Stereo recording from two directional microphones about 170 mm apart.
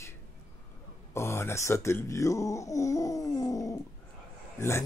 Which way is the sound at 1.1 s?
15° left (ahead or behind).